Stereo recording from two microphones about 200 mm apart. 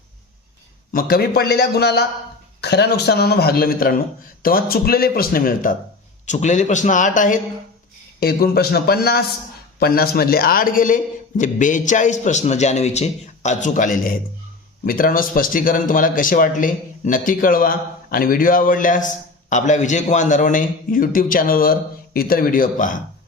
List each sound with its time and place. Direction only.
0.9 s a man's voice: 45° left (ahead or behind)